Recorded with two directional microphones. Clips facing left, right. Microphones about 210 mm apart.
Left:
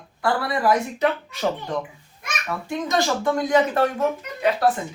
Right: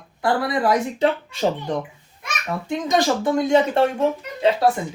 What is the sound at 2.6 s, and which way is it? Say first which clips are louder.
Speech: right 3 dB; 20° right (ahead or behind).